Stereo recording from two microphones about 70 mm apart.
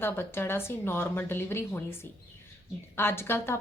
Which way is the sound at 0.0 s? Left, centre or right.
Left.